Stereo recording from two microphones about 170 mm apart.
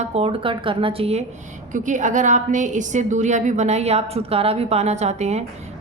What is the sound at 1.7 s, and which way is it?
A woman's voice, 50° right (ahead or behind).